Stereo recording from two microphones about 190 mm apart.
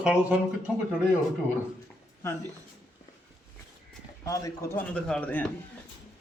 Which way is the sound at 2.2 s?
15° left (ahead or behind).